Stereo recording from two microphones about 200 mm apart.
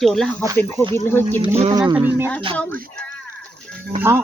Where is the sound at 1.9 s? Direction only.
10° right (ahead or behind).